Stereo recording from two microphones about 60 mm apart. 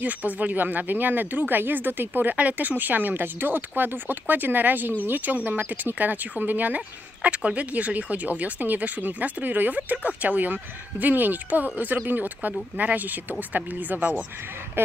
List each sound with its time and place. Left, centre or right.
0.0 s speech: right